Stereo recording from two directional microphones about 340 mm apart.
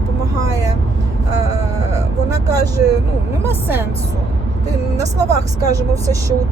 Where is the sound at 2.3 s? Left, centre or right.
Centre.